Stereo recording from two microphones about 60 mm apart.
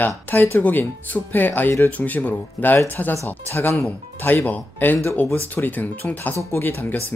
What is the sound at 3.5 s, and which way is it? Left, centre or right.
Speech, left.